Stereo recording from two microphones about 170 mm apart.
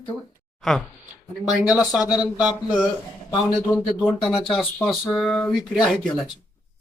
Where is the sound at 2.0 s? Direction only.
25° left (ahead or behind).